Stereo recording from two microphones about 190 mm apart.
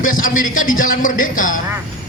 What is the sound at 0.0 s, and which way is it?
Speech, 45° left (ahead or behind).